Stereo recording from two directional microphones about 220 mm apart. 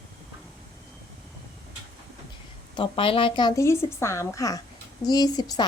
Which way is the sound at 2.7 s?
25° left (ahead or behind).